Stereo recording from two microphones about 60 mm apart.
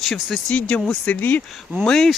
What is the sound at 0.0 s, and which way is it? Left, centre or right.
Speech, centre.